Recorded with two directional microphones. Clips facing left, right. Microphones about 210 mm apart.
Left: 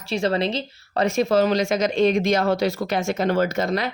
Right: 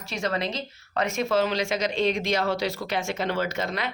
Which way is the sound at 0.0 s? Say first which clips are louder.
Left 6 dB; 30° left (ahead or behind).